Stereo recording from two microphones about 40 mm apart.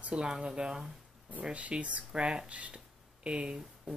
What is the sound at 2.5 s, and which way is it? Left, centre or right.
Speech, right.